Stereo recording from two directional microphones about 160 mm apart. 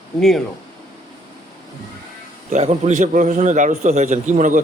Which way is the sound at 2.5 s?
45° right (ahead or behind).